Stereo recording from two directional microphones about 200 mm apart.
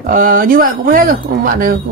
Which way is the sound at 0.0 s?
45° right (ahead or behind).